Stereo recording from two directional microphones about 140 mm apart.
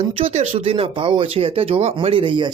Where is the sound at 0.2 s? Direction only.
45° right (ahead or behind).